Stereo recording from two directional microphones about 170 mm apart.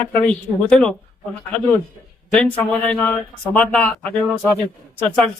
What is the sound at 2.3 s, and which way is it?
Speech, 5° left (ahead or behind).